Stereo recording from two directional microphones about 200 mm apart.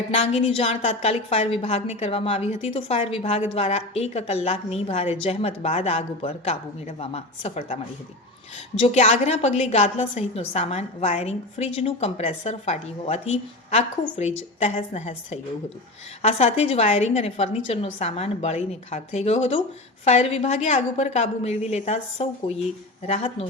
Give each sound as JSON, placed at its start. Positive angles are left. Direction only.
{"t": 0.1, "sound": "a woman's voice", "side_deg": 30}
{"t": 8.8, "sound": "a woman's voice", "side_deg": 30}